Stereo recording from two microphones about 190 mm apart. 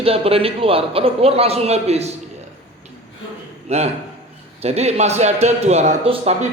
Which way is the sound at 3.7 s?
35° right (ahead or behind).